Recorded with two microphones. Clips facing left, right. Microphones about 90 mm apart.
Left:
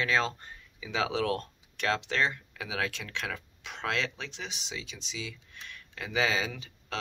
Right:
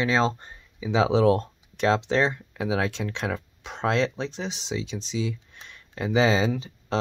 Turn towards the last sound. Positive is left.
turn(degrees=-30)  # may be behind; listen again after turning